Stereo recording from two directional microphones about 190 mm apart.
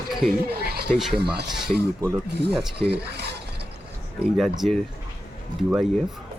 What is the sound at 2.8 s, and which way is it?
Filing, 60° right (ahead or behind).